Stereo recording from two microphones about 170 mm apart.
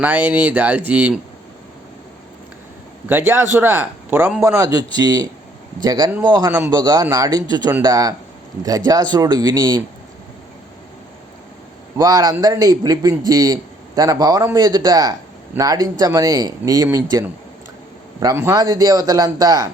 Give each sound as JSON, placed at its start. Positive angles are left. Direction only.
{"t": 0.0, "sound": "speech", "side_deg": -10}
{"t": 3.1, "sound": "a man's voice", "side_deg": -15}
{"t": 11.9, "sound": "a man's voice", "side_deg": -20}